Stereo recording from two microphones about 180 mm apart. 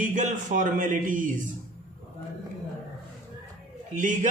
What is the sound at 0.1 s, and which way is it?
A man's voice, 45° right (ahead or behind).